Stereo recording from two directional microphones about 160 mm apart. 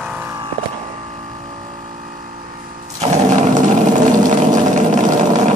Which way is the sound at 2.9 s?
45° right (ahead or behind).